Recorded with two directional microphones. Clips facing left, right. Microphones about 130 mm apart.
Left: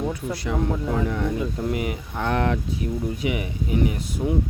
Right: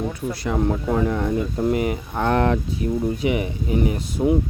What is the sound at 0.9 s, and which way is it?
Speech, 40° right (ahead or behind).